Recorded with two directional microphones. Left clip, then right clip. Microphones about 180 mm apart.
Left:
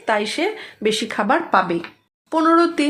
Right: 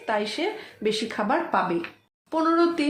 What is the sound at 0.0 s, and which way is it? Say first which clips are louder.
Speech: left 6 dB; 40° left (ahead or behind).